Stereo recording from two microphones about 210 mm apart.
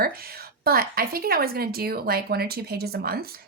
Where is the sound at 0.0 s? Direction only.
45° right (ahead or behind).